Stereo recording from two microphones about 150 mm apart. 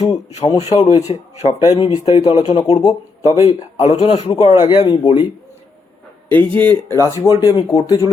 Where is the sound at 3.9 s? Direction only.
35° left (ahead or behind).